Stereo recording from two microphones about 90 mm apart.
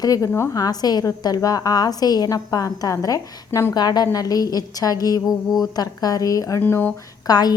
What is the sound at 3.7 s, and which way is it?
A woman's voice, 50° left (ahead or behind).